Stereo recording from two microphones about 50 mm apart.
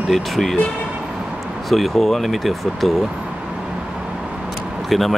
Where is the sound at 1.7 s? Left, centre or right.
Centre.